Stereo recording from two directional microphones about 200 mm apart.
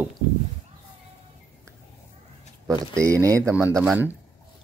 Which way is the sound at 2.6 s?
15° right (ahead or behind).